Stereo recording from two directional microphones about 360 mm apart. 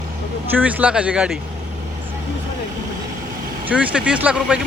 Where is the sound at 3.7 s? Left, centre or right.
Centre.